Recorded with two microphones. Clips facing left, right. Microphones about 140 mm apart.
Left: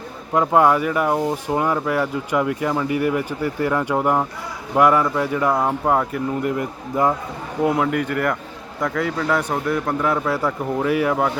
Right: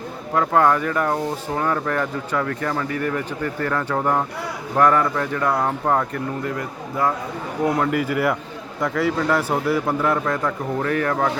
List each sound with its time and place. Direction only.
0.3 s speech: 15° left (ahead or behind)
6.6 s a man's voice: 20° left (ahead or behind)
7.6 s a man's voice: 5° left (ahead or behind)